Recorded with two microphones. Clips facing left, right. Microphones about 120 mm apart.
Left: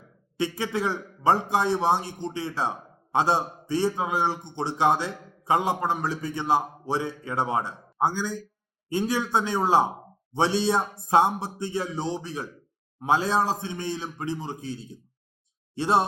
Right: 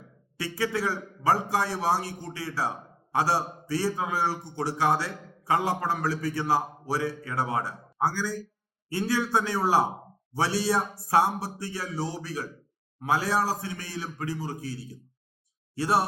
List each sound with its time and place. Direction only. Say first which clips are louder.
0.3 s a man's voice: left 2 dB; 20° left (ahead or behind)